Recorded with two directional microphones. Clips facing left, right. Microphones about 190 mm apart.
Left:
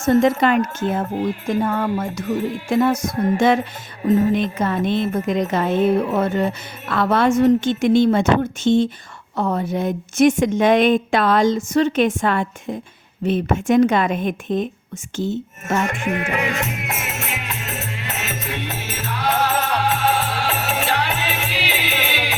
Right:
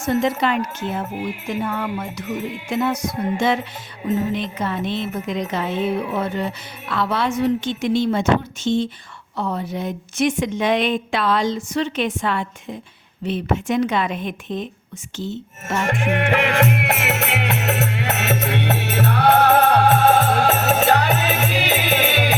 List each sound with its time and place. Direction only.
0.0 s a woman's voice: 45° left (ahead or behind)
1.5 s music: 40° left (ahead or behind)
2.1 s a woman's voice: 45° left (ahead or behind)
16.5 s music: 70° right (ahead or behind); by 22.4 s 45° right (ahead or behind)